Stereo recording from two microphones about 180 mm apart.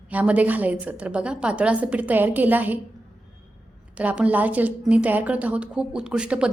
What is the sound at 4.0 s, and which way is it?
A woman's voice, 5° right (ahead or behind).